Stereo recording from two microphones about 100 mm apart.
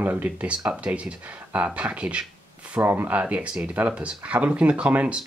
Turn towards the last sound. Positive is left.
turn(degrees=-10)  # may be behind; listen again after turning